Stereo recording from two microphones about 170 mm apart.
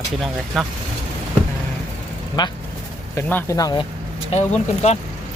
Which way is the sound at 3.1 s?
15° left (ahead or behind).